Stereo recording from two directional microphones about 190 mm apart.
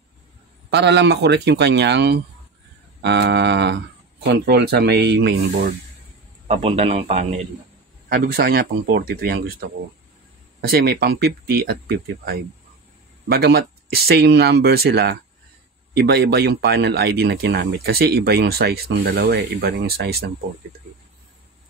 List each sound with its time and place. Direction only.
0.7 s speech: 65° right (ahead or behind)
6.4 s a man's voice: 35° right (ahead or behind)
8.1 s speech: 55° right (ahead or behind)
10.7 s speech: 55° right (ahead or behind)